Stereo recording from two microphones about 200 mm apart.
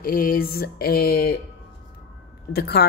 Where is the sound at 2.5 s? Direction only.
55° left (ahead or behind).